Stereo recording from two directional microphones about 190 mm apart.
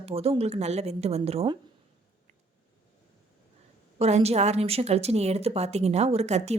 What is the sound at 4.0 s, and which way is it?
A woman's voice, 35° right (ahead or behind).